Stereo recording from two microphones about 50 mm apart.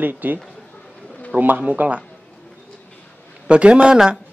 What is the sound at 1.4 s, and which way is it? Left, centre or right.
Speech, right.